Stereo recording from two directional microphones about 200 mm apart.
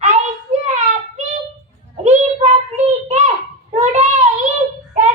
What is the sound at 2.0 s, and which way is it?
Child singing, 35° right (ahead or behind).